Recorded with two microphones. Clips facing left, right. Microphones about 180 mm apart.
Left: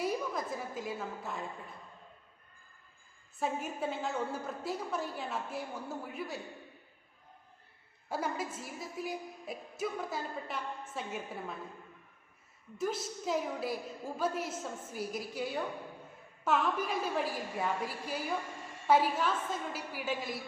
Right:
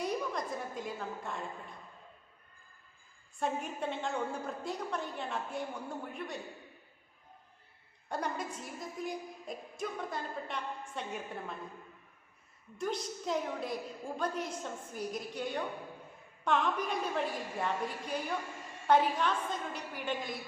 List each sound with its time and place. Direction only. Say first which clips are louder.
0.0 s a woman's voice: left 1 dB; 5° left (ahead or behind)
3.4 s a woman's voice: even; 5° left (ahead or behind)
8.1 s a woman's voice: left 1 dB; 5° left (ahead or behind)
12.7 s a woman's voice: left 1 dB; 5° left (ahead or behind)